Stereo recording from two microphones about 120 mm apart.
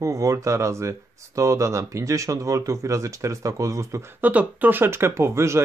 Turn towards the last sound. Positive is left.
turn(degrees=-25)  # may be behind; listen again after turning